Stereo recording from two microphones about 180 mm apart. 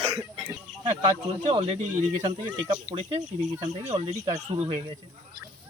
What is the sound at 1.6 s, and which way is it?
Speech, 35° right (ahead or behind).